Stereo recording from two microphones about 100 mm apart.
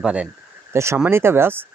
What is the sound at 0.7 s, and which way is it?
Speech, 25° right (ahead or behind).